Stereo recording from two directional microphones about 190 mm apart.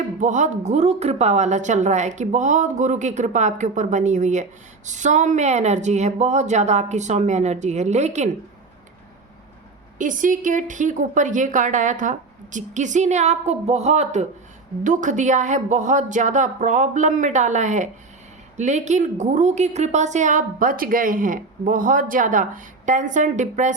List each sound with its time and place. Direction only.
0.2 s a woman's voice: 40° right (ahead or behind)
10.0 s a woman's voice: 45° right (ahead or behind)